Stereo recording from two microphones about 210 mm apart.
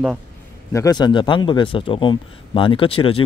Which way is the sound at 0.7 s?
15° left (ahead or behind).